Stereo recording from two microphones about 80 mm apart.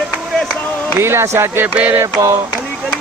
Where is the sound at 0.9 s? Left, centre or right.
Right.